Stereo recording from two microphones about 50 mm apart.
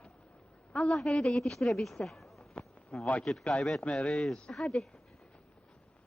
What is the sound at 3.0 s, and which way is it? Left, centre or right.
Speech, left.